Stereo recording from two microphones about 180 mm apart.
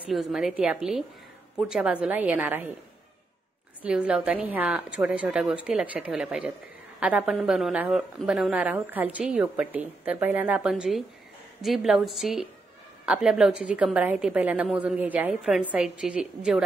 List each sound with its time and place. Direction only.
0.0 s a woman's voice: centre (ahead or behind)
3.8 s a woman's voice: 5° right (ahead or behind)